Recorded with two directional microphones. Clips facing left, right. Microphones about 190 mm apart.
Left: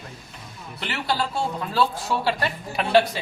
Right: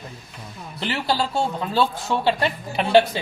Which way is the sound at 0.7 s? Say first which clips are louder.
Right 3 dB; 30° right (ahead or behind).